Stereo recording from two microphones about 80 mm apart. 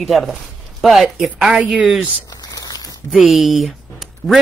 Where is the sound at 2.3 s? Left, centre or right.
Left.